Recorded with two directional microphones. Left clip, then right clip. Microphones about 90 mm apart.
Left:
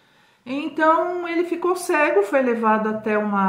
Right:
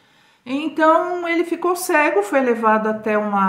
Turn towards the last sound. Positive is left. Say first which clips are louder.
# right 3 dB
turn(degrees=-25)  # may be behind; listen again after turning